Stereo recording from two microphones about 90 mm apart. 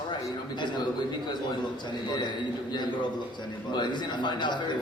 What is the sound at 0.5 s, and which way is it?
A man's voice, 55° left (ahead or behind).